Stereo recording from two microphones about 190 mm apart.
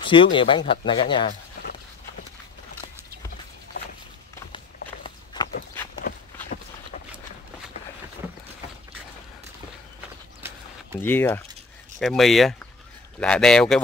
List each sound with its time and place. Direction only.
0.0 s speech: 25° left (ahead or behind)
5.0 s walk: 25° left (ahead or behind)
6.1 s walk: 55° left (ahead or behind)
11.0 s speech: 10° left (ahead or behind)